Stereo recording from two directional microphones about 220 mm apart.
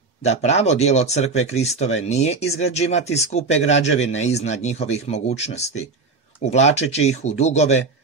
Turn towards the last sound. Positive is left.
turn(degrees=30)  # may be behind; listen again after turning